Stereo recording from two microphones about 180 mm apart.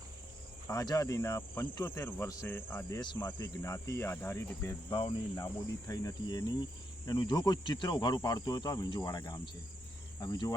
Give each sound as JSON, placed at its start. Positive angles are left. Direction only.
{"t": 0.7, "sound": "cricket", "side_deg": 20}
{"t": 3.0, "sound": "speech", "side_deg": 25}
{"t": 3.6, "sound": "cricket", "side_deg": 15}
{"t": 5.9, "sound": "speech", "side_deg": 20}